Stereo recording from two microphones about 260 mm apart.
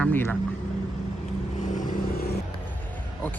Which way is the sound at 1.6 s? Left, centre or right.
Left.